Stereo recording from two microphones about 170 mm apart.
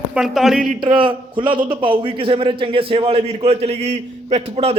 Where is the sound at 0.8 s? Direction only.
30° right (ahead or behind).